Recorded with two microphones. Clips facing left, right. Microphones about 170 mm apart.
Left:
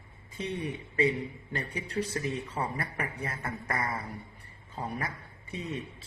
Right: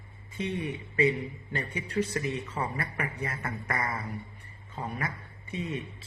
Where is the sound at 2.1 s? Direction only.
30° left (ahead or behind).